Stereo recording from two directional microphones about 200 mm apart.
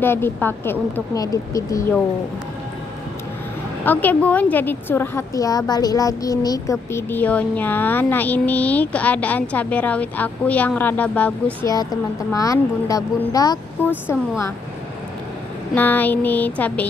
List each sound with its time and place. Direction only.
0.0 s a woman's voice: 10° left (ahead or behind)
3.8 s a woman's voice: 10° left (ahead or behind)
11.6 s a woman's voice: 20° left (ahead or behind)
15.7 s a woman's voice: 10° left (ahead or behind)